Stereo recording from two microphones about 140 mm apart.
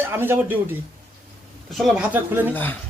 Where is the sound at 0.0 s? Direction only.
15° right (ahead or behind).